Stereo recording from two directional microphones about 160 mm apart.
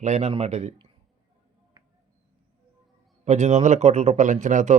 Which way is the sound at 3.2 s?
45° right (ahead or behind).